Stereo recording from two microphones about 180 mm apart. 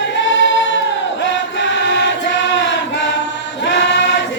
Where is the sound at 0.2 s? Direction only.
90° left.